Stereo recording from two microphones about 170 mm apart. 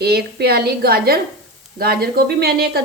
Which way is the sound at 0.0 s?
70° right (ahead or behind).